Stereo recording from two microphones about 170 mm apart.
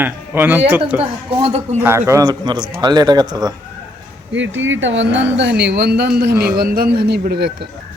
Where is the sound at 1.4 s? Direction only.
35° right (ahead or behind).